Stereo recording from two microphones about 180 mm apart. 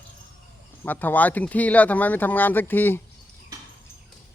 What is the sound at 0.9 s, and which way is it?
Speech, 10° left (ahead or behind).